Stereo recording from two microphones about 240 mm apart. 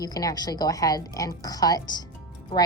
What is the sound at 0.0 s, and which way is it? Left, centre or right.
A woman's voice, centre.